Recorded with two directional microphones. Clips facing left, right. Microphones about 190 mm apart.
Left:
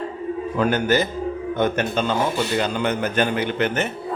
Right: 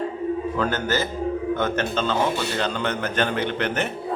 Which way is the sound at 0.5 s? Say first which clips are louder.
Left 4 dB; 15° left (ahead or behind).